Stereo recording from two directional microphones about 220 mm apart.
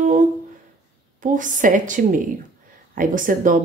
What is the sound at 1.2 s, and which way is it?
A woman's voice, 35° right (ahead or behind).